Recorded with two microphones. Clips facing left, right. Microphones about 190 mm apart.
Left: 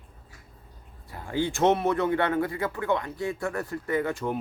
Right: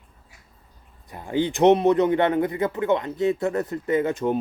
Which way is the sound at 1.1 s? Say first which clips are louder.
Right 4 dB; 20° right (ahead or behind).